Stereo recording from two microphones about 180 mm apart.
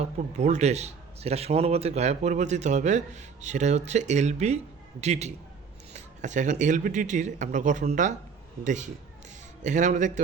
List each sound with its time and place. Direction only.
0.0 s a man's voice: 40° right (ahead or behind)